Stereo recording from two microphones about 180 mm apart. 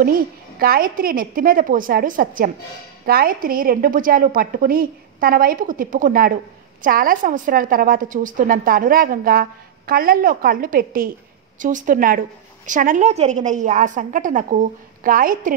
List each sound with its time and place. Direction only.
0.6 s a woman's voice: 55° right (ahead or behind)